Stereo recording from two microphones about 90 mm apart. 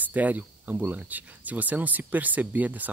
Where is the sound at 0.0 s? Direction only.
20° right (ahead or behind).